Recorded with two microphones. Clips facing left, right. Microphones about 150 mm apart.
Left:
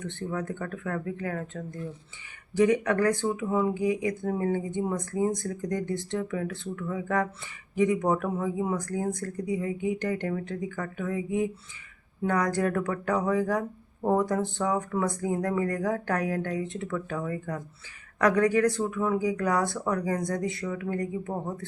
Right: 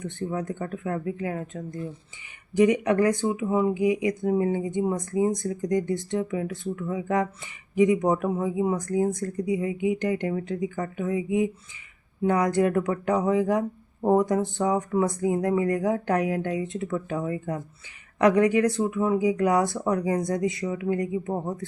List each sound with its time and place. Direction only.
0.2 s speech: 20° right (ahead or behind)